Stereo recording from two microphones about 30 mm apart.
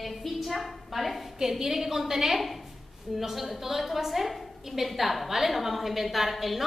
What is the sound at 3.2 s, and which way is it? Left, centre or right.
A woman's voice, centre.